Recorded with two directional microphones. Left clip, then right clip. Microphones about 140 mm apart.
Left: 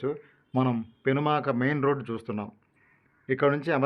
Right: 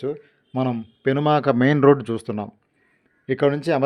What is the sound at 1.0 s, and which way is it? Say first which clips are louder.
Speech: right 6 dB; 40° right (ahead or behind).